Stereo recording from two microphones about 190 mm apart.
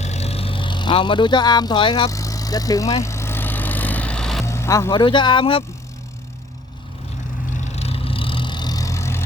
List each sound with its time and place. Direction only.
0.0 s vehicle: 35° left (ahead or behind); by 4.4 s 5° left (ahead or behind)
4.4 s vehicle: 15° left (ahead or behind)
4.9 s speech: 25° left (ahead or behind)
7.5 s vehicle: 35° left (ahead or behind); by 9.2 s 15° left (ahead or behind)